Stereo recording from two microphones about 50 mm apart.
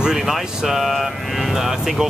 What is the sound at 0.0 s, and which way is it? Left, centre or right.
Speech, centre.